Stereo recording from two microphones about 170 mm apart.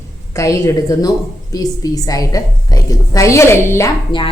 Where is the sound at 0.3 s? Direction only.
20° left (ahead or behind).